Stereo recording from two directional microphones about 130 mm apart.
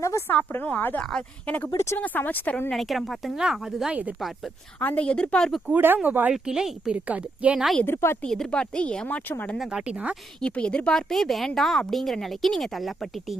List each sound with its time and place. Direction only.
0.0 s a woman's voice: 25° left (ahead or behind)
0.3 s speech: 10° left (ahead or behind); by 4.1 s 10° right (ahead or behind)
4.8 s speech: 10° left (ahead or behind)
5.7 s a woman's voice: 15° right (ahead or behind)
7.8 s a woman's voice: 20° left (ahead or behind)
8.2 s speech: 5° left (ahead or behind)
9.6 s a woman's voice: 5° right (ahead or behind)
10.4 s speech: 10° left (ahead or behind)